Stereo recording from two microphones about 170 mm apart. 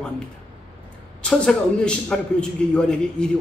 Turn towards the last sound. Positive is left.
turn(degrees=5)  # may be behind; listen again after turning